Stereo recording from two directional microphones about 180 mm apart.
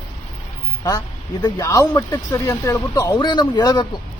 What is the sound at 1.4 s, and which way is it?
Speech, 20° left (ahead or behind).